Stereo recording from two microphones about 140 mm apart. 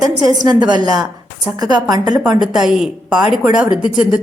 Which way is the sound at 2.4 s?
5° right (ahead or behind).